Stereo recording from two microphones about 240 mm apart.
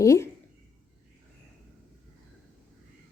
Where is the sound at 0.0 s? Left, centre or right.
Centre.